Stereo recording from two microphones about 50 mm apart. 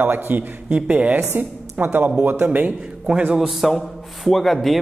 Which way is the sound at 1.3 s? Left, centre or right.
Right.